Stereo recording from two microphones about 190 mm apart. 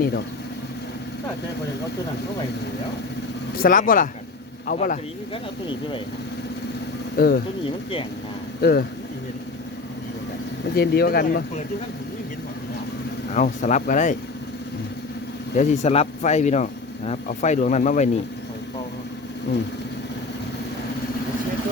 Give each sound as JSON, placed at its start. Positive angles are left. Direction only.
{"t": 3.6, "sound": "speech", "side_deg": 45}
{"t": 5.3, "sound": "speech", "side_deg": 25}
{"t": 7.2, "sound": "speech", "side_deg": 50}
{"t": 7.6, "sound": "speech", "side_deg": 30}
{"t": 10.8, "sound": "speech", "side_deg": 55}
{"t": 13.3, "sound": "speech", "side_deg": 40}
{"t": 15.5, "sound": "speech", "side_deg": 35}
{"t": 19.5, "sound": "speech", "side_deg": 65}